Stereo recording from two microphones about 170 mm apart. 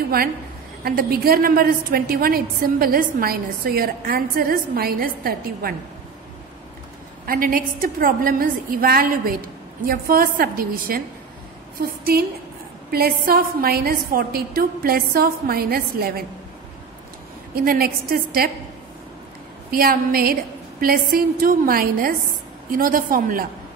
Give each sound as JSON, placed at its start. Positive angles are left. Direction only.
{"t": 0.8, "sound": "a woman's voice", "side_deg": -60}
{"t": 7.2, "sound": "a woman's voice", "side_deg": -55}
{"t": 17.6, "sound": "a woman's voice", "side_deg": -60}
{"t": 19.7, "sound": "a woman's voice", "side_deg": -60}